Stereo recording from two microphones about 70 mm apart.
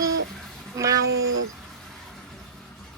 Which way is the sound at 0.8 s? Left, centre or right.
Right.